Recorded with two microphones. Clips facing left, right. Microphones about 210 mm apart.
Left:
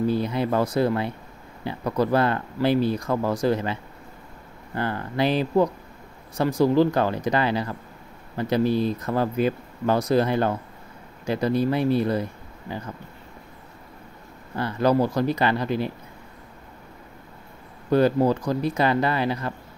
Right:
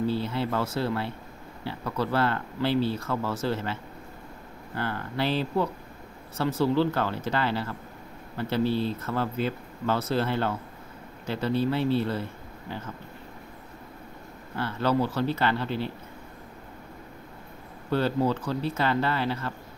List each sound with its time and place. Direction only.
0.0 s speech: 15° left (ahead or behind)
1.9 s speech: 15° left (ahead or behind)
14.6 s speech: 15° left (ahead or behind)
17.9 s speech: 10° left (ahead or behind)